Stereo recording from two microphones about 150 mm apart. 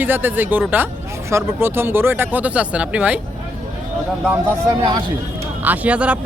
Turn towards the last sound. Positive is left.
turn(degrees=-10)  # may be behind; listen again after turning